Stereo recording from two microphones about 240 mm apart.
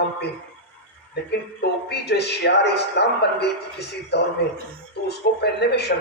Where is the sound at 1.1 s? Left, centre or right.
Left.